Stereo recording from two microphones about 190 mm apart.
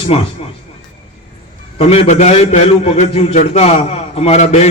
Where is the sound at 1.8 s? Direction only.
35° left (ahead or behind).